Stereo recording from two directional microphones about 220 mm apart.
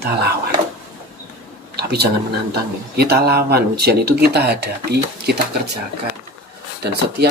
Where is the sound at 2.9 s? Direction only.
45° right (ahead or behind).